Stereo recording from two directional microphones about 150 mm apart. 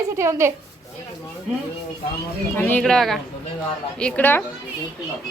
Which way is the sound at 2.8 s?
Centre (ahead or behind).